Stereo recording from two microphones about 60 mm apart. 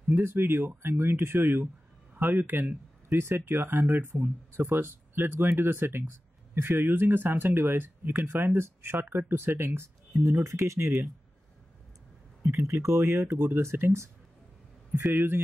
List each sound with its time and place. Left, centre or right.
0.1 s speech: right
3.1 s speech: right
10.3 s speech: right
10.6 s speech: right
12.4 s speech: right
15.1 s speech: right